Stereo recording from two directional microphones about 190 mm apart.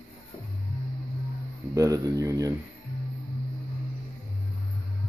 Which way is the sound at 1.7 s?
15° right (ahead or behind).